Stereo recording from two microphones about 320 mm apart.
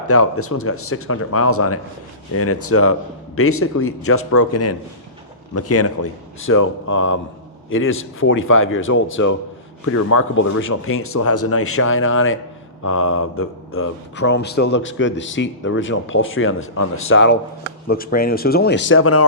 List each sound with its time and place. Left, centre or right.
0.1 s speech: left